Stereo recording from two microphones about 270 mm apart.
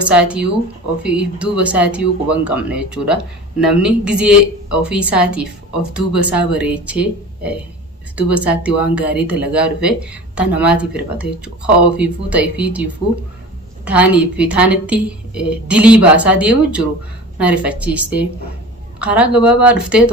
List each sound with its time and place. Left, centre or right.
0.0 s speech: centre